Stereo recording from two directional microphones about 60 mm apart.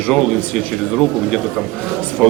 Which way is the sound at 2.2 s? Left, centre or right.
Centre.